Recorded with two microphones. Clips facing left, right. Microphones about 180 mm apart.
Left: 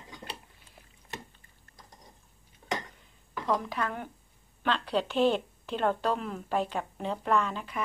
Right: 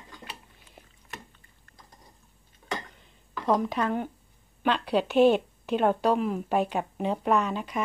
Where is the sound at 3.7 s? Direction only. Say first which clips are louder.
Right 6 dB; 20° right (ahead or behind).